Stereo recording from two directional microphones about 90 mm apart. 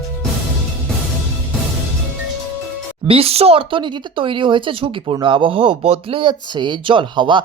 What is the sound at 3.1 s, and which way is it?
Speech, 90° right.